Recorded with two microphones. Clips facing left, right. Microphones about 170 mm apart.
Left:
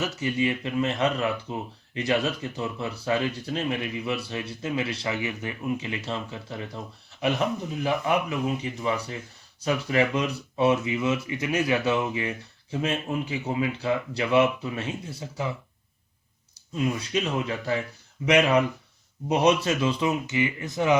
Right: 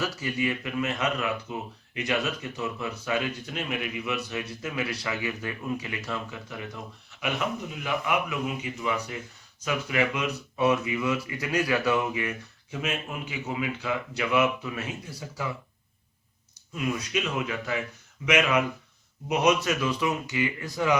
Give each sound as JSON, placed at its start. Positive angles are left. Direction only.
{"t": 0.0, "sound": "speech", "side_deg": 25}
{"t": 16.7, "sound": "speech", "side_deg": 30}